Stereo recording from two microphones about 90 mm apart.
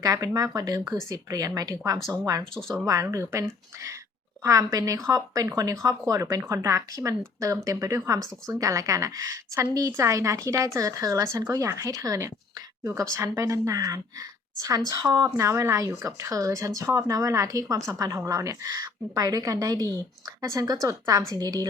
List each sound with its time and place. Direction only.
0.0 s speech: 45° right (ahead or behind)
2.4 s speech: 5° left (ahead or behind)
2.8 s speech: 40° right (ahead or behind)
4.4 s speech: 40° right (ahead or behind)